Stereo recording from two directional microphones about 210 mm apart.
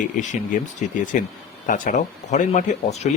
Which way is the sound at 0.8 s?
40° left (ahead or behind).